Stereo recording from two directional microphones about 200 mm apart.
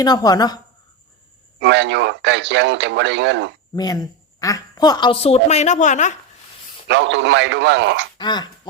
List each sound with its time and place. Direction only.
0.0 s a woman's voice: 20° left (ahead or behind)
1.5 s speech: 60° right (ahead or behind)
3.8 s a woman's voice: 20° left (ahead or behind); by 6.1 s 35° left (ahead or behind)
6.8 s speech: 60° right (ahead or behind)
8.2 s a woman's voice: 20° left (ahead or behind)